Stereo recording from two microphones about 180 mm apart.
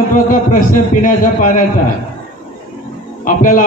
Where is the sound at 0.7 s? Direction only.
45° left (ahead or behind).